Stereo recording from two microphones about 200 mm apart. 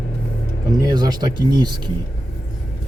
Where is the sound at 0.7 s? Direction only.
20° right (ahead or behind).